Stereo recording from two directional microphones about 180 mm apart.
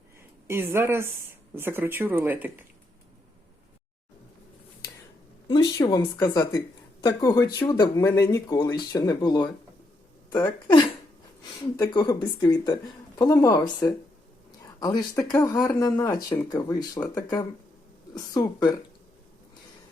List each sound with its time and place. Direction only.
0.4 s speech: 15° right (ahead or behind)
5.5 s a sound: 20° left (ahead or behind)
6.0 s speech: 10° left (ahead or behind)
6.3 s speech: 20° left (ahead or behind)
15.4 s speech: 20° left (ahead or behind)